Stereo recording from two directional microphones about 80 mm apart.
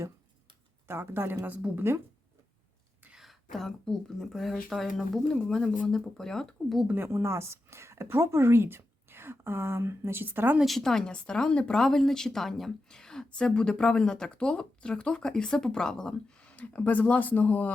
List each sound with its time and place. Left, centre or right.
0.9 s a woman's voice: right
3.1 s speech: centre
6.8 s a woman's voice: right
10.6 s speech: centre; by 17.7 s left